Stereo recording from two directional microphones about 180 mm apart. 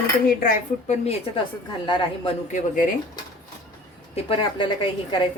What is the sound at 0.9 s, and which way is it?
A woman's voice, 35° left (ahead or behind).